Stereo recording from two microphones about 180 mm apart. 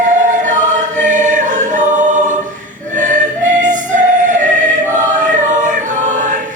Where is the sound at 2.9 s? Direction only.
45° right (ahead or behind).